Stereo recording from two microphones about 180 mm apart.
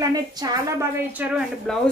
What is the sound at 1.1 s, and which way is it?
Speech, 5° right (ahead or behind).